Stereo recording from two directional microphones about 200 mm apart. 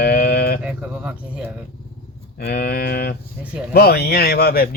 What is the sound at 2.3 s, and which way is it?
Speech, 50° left (ahead or behind).